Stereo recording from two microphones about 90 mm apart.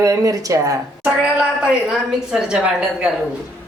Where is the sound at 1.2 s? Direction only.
5° right (ahead or behind).